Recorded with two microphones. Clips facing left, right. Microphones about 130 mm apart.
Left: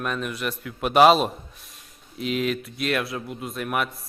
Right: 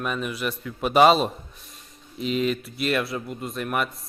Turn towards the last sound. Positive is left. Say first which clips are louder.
# even
turn(degrees=0)  # may be behind; listen again after turning